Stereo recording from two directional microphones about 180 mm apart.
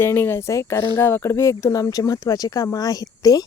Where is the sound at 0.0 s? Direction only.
10° left (ahead or behind).